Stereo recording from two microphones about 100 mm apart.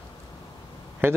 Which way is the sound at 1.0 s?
20° right (ahead or behind).